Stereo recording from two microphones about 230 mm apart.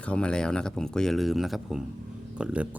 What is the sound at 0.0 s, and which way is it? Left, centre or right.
Speech, centre.